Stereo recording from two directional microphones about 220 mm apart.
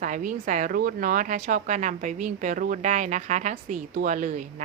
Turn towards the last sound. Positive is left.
turn(degrees=-35)  # may be behind; listen again after turning